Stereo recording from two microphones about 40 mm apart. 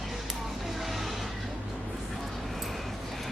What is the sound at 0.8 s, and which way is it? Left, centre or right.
Music, centre.